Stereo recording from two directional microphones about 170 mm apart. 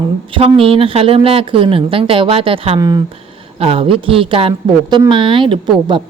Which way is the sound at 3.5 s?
35° right (ahead or behind).